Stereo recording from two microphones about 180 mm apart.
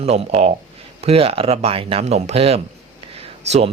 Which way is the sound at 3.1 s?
35° right (ahead or behind).